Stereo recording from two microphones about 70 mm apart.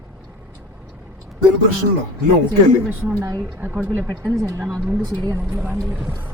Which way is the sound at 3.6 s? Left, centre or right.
Right.